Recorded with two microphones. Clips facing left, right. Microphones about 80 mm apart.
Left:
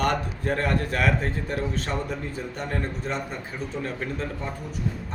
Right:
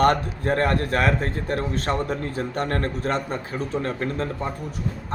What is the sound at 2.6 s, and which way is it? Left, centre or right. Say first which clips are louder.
Speech: right 5 dB; right.